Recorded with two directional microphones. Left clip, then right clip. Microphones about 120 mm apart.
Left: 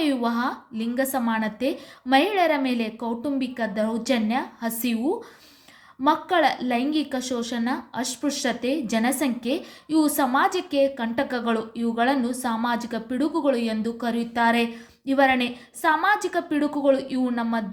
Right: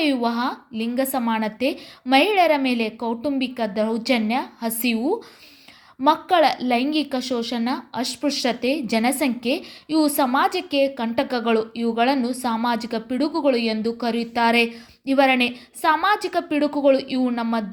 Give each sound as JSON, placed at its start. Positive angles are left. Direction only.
{"t": 0.0, "sound": "a woman's voice", "side_deg": -20}